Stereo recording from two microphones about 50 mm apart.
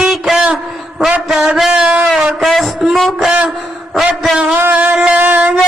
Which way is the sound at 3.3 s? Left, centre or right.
Centre.